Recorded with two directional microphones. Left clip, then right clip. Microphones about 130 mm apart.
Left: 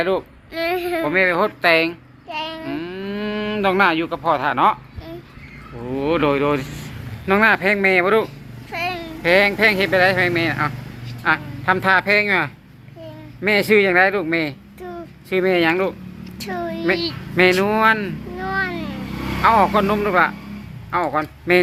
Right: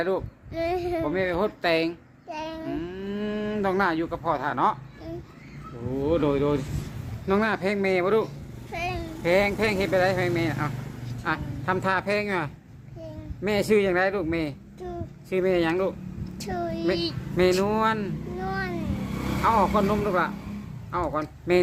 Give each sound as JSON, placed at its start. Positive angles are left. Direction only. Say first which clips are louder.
{"t": 0.0, "sound": "speech", "louder": "left 6 dB", "side_deg": 10}
{"t": 0.5, "sound": "speech", "louder": "left 5 dB", "side_deg": -10}
{"t": 1.1, "sound": "speech", "louder": "left 13 dB", "side_deg": 10}
{"t": 1.4, "sound": "speech", "louder": "left 8 dB", "side_deg": -5}
{"t": 2.3, "sound": "child singing", "louder": "left 7 dB", "side_deg": -30}
{"t": 2.6, "sound": "speech", "louder": "left 5 dB", "side_deg": 15}
{"t": 6.1, "sound": "speech", "louder": "left 6 dB", "side_deg": 15}
{"t": 8.7, "sound": "babbling", "louder": "left 6 dB", "side_deg": -20}
{"t": 9.2, "sound": "speech", "louder": "left 8 dB", "side_deg": 0}
{"t": 16.4, "sound": "a sound", "louder": "left 4 dB", "side_deg": -15}
{"t": 17.5, "sound": "speech", "louder": "left 8 dB", "side_deg": 10}
{"t": 18.3, "sound": "a sound", "louder": "left 8 dB", "side_deg": -15}
{"t": 19.4, "sound": "speech", "louder": "left 7 dB", "side_deg": 10}